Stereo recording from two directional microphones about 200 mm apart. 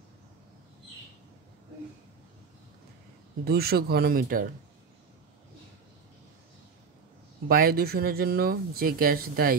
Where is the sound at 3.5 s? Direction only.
50° right (ahead or behind).